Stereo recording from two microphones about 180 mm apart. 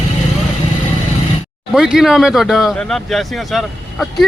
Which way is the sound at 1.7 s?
Centre (ahead or behind).